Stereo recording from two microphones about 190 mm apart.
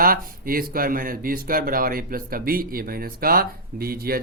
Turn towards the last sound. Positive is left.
turn(degrees=-50)  # may be behind; listen again after turning